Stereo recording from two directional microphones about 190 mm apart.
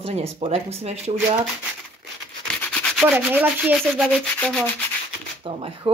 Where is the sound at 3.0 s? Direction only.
10° right (ahead or behind).